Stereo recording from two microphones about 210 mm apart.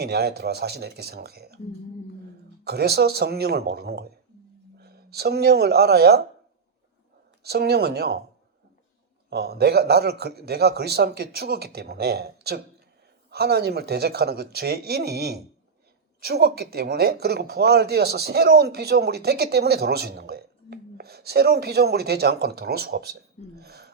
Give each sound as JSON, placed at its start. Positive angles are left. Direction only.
{"t": 0.0, "sound": "speech", "side_deg": -50}
{"t": 2.6, "sound": "speech", "side_deg": -50}
{"t": 7.4, "sound": "speech", "side_deg": -50}
{"t": 9.3, "sound": "speech", "side_deg": -50}
{"t": 23.6, "sound": "a sound", "side_deg": -50}